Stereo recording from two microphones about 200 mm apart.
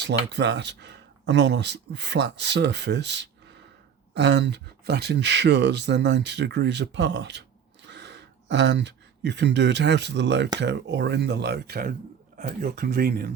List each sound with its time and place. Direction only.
0.0 s speech: 60° right (ahead or behind)